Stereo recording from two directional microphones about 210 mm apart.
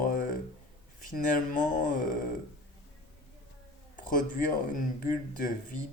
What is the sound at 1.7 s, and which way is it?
Speech, 40° left (ahead or behind).